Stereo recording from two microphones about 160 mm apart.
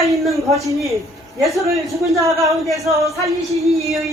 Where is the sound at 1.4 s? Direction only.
Centre (ahead or behind).